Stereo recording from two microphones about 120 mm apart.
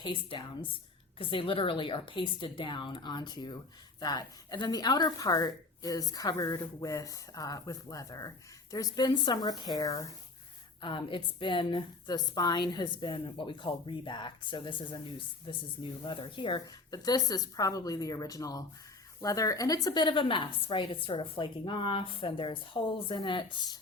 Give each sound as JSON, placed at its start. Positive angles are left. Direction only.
{"t": 0.0, "sound": "a woman's voice", "side_deg": 45}
{"t": 10.8, "sound": "a woman's voice", "side_deg": 45}